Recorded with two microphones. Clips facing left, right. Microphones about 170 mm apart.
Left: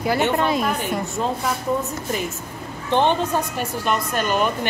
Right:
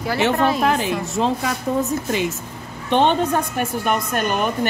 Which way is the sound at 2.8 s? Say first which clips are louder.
Right 2 dB; 65° right (ahead or behind).